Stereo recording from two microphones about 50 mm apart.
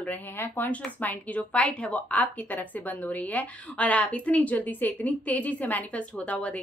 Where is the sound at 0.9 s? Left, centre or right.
Left.